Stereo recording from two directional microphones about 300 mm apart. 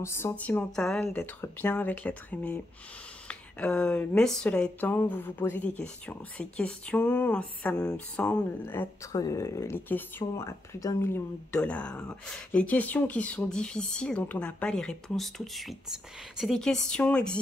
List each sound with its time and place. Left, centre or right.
0.0 s speech: centre